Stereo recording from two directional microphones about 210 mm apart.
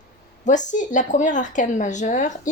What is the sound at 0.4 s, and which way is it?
A woman's voice, 35° left (ahead or behind).